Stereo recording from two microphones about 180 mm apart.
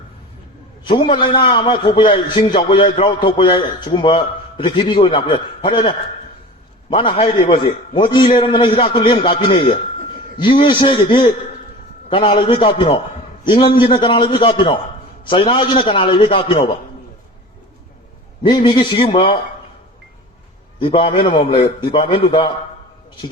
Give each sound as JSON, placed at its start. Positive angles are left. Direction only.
{"t": 0.9, "sound": "a man's voice", "side_deg": 25}
{"t": 6.9, "sound": "a man's voice", "side_deg": 30}
{"t": 18.5, "sound": "a man's voice", "side_deg": 30}
{"t": 20.7, "sound": "a man's voice", "side_deg": 25}